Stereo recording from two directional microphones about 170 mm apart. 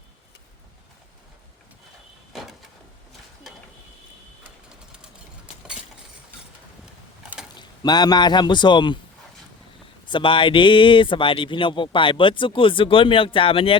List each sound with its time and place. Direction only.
2.3 s vehicle: centre (ahead or behind)
6.8 s a sound: 5° right (ahead or behind)
7.5 s a man's voice: 25° left (ahead or behind)
10.1 s speech: 30° left (ahead or behind)